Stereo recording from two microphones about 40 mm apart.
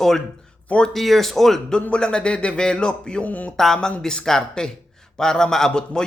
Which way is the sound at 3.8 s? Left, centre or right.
Centre.